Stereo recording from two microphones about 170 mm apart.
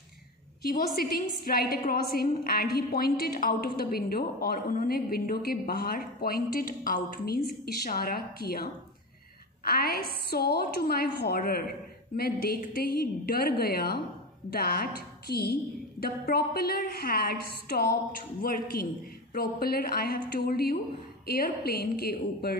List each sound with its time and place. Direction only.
0.6 s a woman's voice: 60° left (ahead or behind)
9.7 s a woman's voice: 60° left (ahead or behind)